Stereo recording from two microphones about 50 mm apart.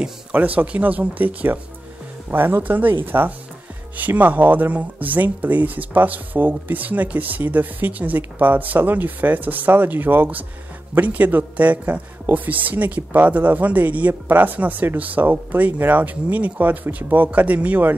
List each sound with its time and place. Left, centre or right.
0.3 s speech: right
2.3 s speech: right